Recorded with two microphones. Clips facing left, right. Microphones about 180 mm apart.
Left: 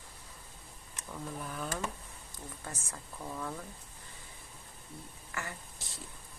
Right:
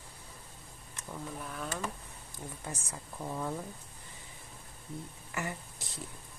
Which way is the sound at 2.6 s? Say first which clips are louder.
Right 2 dB; 15° right (ahead or behind).